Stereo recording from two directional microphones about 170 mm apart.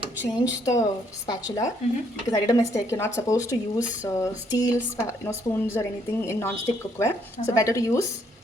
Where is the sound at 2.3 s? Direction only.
20° left (ahead or behind).